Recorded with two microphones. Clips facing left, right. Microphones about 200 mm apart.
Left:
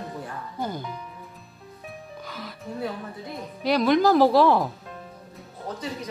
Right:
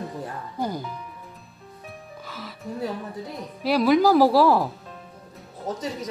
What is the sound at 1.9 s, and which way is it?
Music, centre (ahead or behind).